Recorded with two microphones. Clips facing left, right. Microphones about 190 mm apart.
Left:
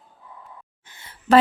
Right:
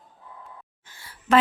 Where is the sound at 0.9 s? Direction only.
20° left (ahead or behind).